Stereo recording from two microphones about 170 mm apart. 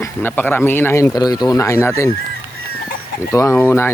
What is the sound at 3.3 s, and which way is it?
Speech, 15° left (ahead or behind).